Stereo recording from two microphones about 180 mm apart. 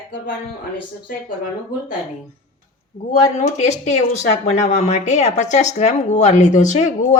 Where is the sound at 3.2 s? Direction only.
40° left (ahead or behind).